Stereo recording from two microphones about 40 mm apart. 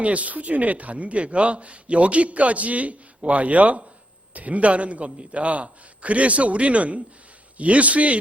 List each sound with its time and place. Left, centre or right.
0.0 s speech: right